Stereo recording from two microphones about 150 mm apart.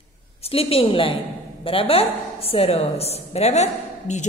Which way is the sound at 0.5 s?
40° left (ahead or behind).